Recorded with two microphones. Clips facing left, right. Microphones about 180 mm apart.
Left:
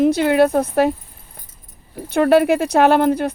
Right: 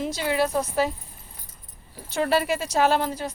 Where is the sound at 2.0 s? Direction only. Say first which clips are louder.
Left 10 dB; 60° left (ahead or behind).